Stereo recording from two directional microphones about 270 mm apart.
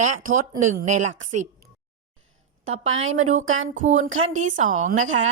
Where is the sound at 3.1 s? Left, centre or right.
Right.